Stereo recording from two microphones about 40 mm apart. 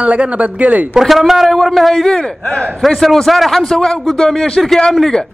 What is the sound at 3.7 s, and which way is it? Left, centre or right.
Speech, centre.